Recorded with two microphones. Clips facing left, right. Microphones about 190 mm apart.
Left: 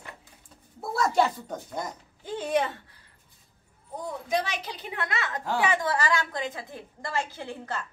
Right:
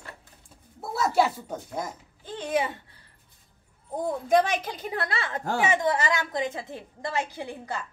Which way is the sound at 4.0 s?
50° right (ahead or behind).